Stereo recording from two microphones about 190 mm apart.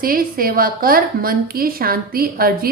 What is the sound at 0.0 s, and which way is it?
Speech, 50° right (ahead or behind).